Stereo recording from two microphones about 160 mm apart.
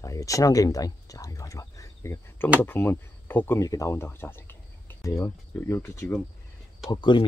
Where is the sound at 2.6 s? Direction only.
15° left (ahead or behind).